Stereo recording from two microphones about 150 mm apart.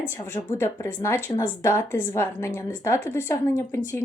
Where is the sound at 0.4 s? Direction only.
35° left (ahead or behind).